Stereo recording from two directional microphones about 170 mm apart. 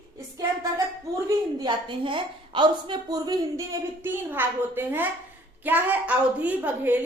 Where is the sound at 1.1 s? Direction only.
25° right (ahead or behind).